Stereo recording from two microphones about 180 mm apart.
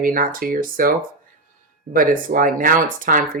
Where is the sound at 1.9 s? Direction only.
50° right (ahead or behind).